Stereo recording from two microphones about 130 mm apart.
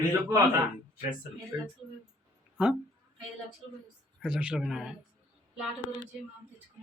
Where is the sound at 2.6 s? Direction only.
10° right (ahead or behind).